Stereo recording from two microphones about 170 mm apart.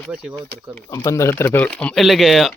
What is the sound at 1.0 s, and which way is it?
Speech, 15° left (ahead or behind).